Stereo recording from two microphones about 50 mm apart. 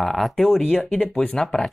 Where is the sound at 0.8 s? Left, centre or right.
Centre.